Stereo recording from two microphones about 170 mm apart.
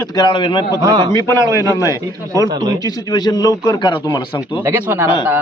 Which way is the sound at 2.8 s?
25° left (ahead or behind).